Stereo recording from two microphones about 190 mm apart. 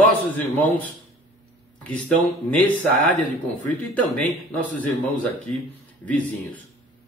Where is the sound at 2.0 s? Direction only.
5° left (ahead or behind).